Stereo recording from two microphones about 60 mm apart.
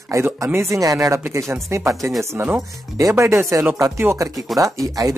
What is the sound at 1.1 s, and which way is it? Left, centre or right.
Speech, right.